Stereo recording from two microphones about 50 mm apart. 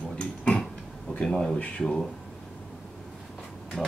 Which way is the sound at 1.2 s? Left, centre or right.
Centre.